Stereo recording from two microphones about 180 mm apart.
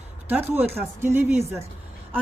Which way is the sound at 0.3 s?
10° right (ahead or behind).